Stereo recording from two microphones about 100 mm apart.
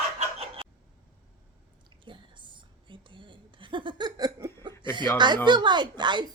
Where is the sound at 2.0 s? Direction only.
55° right (ahead or behind).